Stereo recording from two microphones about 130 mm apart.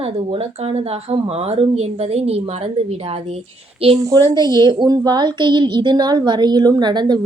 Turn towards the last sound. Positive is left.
turn(degrees=-35)  # may be behind; listen again after turning